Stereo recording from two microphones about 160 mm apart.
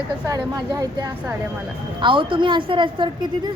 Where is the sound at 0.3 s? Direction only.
25° right (ahead or behind).